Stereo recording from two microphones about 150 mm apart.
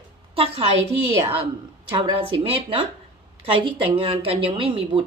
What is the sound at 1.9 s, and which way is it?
Speech, 35° right (ahead or behind).